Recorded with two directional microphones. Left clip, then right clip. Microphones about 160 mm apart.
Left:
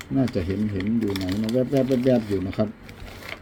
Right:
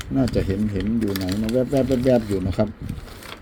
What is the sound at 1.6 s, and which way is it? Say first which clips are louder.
Speech: right 1 dB; 35° right (ahead or behind).